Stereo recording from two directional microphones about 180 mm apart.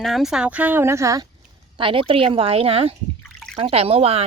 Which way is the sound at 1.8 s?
30° right (ahead or behind).